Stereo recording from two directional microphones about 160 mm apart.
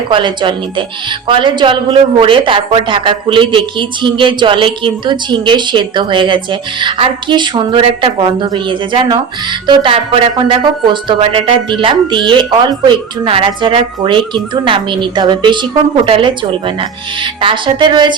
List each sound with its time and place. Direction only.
0.1 s a woman's voice: 30° right (ahead or behind)